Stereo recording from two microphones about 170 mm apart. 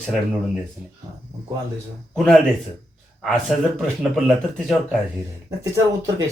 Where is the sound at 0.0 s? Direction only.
Centre (ahead or behind).